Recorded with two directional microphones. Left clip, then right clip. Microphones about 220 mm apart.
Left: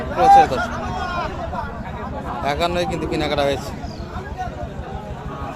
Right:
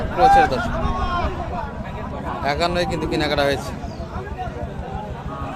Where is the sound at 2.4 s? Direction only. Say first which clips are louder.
Even; centre (ahead or behind).